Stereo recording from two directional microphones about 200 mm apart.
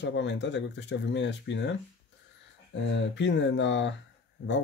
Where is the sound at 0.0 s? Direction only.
60° left (ahead or behind).